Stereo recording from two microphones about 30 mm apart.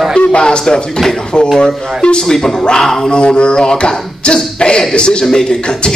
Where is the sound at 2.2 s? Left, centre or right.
Centre.